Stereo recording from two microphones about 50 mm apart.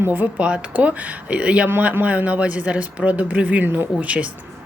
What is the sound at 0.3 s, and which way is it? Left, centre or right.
A woman's voice, right.